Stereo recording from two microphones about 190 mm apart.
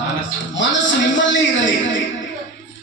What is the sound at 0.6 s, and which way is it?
Speech, 75° left (ahead or behind).